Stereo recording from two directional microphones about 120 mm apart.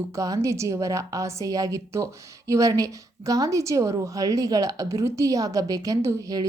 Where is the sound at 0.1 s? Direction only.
25° right (ahead or behind).